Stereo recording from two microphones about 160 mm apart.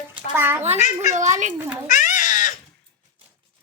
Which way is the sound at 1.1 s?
50° right (ahead or behind).